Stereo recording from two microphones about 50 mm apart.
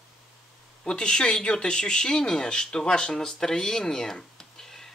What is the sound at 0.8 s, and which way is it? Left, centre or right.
Speech, centre.